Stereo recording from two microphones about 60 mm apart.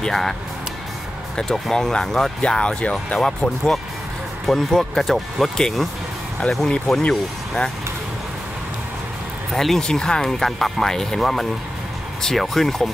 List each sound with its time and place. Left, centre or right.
0.0 s speech: centre
7.0 s speech: centre
9.5 s speech: centre